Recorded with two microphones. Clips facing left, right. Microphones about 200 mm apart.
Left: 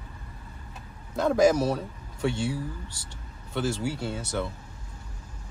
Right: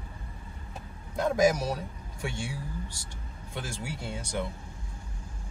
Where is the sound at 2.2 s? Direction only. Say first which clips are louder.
Left 8 dB; 10° right (ahead or behind).